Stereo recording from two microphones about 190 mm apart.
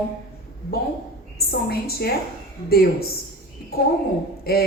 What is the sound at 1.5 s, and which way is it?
Speech, 55° left (ahead or behind).